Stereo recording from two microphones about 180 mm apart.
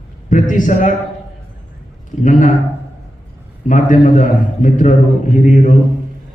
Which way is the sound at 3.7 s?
45° left (ahead or behind).